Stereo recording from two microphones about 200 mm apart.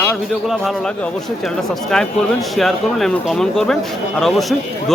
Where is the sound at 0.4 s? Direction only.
Centre (ahead or behind).